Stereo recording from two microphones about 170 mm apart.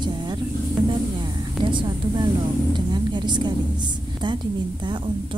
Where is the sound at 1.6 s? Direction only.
30° right (ahead or behind).